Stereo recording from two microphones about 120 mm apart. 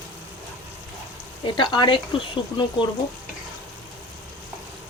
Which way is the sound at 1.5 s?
40° left (ahead or behind).